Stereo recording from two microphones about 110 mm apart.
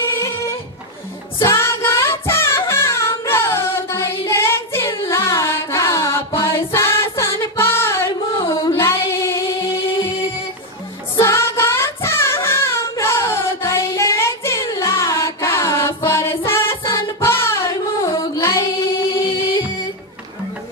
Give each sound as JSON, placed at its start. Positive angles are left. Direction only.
{"t": 0.0, "sound": "a sound", "side_deg": 25}
{"t": 1.4, "sound": "music", "side_deg": 25}
{"t": 2.7, "sound": "singing", "side_deg": 25}
{"t": 4.3, "sound": "female singing", "side_deg": 25}
{"t": 5.0, "sound": "music", "side_deg": 25}
{"t": 8.4, "sound": "a sound", "side_deg": 50}
{"t": 8.7, "sound": "music", "side_deg": 25}
{"t": 11.1, "sound": "child singing", "side_deg": 25}
{"t": 16.1, "sound": "music", "side_deg": 25}